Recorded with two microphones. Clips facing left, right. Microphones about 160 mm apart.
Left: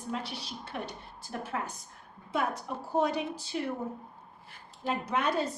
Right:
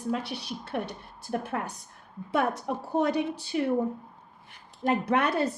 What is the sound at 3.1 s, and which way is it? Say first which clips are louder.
Speech: right 5 dB; 65° right (ahead or behind).